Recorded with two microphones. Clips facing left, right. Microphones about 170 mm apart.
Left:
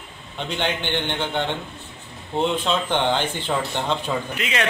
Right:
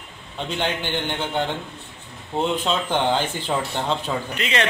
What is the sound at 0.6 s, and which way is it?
Speech, 5° right (ahead or behind).